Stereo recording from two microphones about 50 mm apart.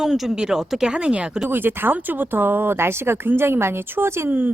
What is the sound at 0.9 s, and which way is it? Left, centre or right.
Speech, right.